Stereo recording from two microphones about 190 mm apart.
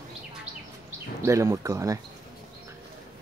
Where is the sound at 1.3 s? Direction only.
15° right (ahead or behind).